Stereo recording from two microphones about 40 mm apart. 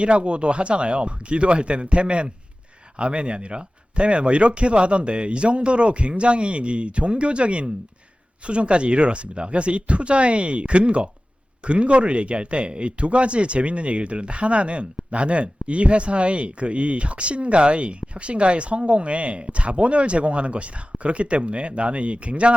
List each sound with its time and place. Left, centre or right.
0.0 s speech: right